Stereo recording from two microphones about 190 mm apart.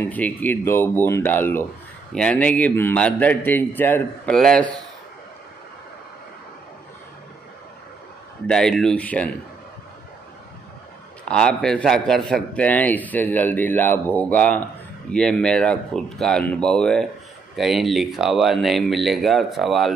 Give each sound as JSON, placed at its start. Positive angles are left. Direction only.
{"t": 0.0, "sound": "a man's voice", "side_deg": 10}
{"t": 8.5, "sound": "speech", "side_deg": 5}
{"t": 11.2, "sound": "a man's voice", "side_deg": 5}